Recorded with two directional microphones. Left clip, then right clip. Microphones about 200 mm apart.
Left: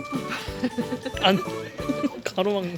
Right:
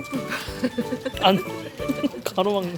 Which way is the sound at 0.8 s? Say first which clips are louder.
Right 2 dB; centre (ahead or behind).